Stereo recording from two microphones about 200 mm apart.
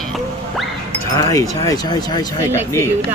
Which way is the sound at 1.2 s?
15° left (ahead or behind).